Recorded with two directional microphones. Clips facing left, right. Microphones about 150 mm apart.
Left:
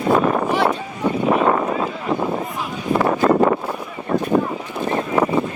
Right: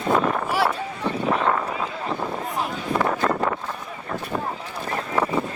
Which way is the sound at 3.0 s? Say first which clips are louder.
Left 8 dB; 30° left (ahead or behind).